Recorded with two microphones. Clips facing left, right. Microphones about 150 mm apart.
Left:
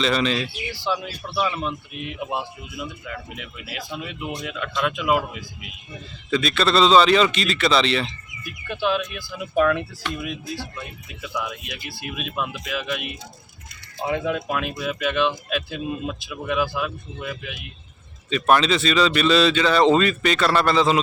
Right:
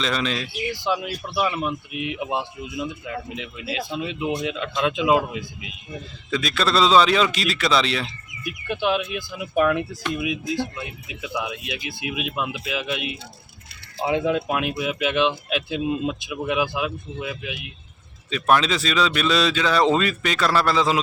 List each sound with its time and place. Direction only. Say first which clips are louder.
0.0 s speech: left 3 dB; centre (ahead or behind)
0.7 s speech: right 3 dB; 15° right (ahead or behind)
6.3 s speech: left 2 dB; centre (ahead or behind)
8.4 s speech: right 1 dB; 15° right (ahead or behind)
14.1 s speech: right 2 dB; 20° right (ahead or behind)
18.3 s speech: left 1 dB; centre (ahead or behind)